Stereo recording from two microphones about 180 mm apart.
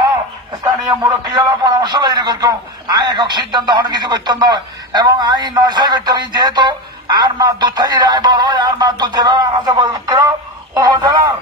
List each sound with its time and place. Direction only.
0.8 s a man's voice: 20° right (ahead or behind)